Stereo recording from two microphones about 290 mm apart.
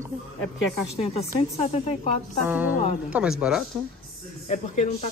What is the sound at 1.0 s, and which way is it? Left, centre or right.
A woman's voice, left.